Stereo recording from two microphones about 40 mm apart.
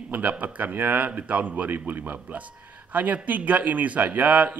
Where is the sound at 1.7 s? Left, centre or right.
Right.